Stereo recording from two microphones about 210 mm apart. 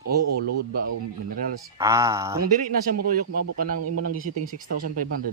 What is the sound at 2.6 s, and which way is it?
Speech, 40° right (ahead or behind).